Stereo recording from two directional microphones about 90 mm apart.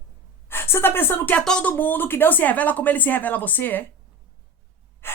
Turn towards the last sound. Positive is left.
turn(degrees=25)  # may be behind; listen again after turning